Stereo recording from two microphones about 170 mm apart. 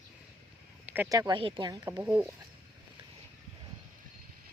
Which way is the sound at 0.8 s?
10° right (ahead or behind).